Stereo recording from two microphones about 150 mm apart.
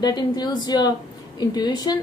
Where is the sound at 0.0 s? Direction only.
30° left (ahead or behind).